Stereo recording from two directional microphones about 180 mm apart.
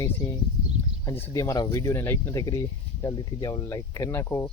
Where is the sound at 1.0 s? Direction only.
15° left (ahead or behind).